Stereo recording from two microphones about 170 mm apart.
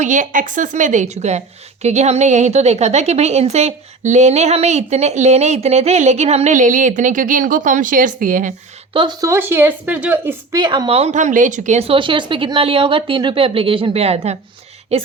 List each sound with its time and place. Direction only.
0.0 s a woman's voice: 50° right (ahead or behind)
8.9 s speech: 25° right (ahead or behind); by 10.6 s 10° right (ahead or behind)
10.6 s a woman's voice: 25° right (ahead or behind)